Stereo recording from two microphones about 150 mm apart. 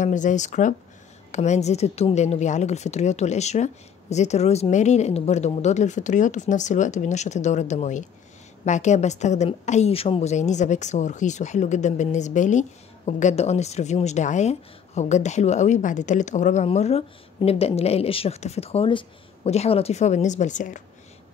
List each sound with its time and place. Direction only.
0.0 s a woman's voice: 55° left (ahead or behind)